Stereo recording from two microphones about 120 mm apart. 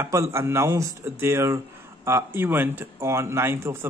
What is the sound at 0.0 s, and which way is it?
A man's voice, 25° right (ahead or behind).